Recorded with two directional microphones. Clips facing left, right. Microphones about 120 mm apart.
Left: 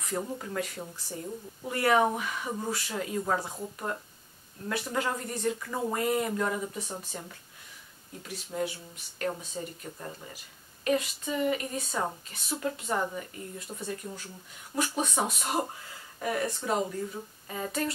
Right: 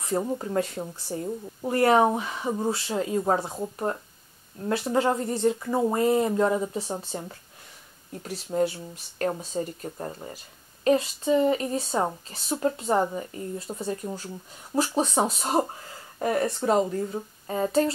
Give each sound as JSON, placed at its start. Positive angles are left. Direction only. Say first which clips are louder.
{"t": 0.0, "sound": "speech", "louder": "right 7 dB", "side_deg": -30}